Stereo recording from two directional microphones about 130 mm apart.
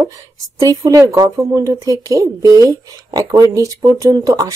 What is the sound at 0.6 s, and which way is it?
Speech, 25° right (ahead or behind).